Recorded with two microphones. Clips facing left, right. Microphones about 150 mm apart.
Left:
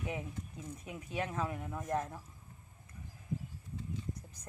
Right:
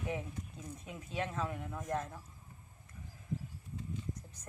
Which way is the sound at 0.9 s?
10° left (ahead or behind).